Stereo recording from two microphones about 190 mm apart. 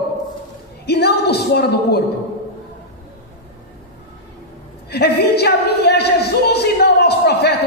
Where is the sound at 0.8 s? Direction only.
60° left (ahead or behind).